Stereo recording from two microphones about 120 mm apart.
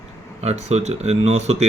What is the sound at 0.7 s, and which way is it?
Speech, 65° right (ahead or behind).